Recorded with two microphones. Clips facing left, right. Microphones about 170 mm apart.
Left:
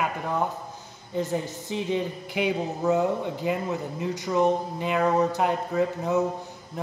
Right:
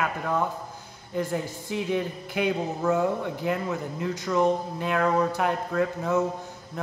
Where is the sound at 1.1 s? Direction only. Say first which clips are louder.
Left 1 dB; 10° right (ahead or behind).